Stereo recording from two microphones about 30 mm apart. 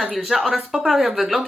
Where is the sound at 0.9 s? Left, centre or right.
Centre.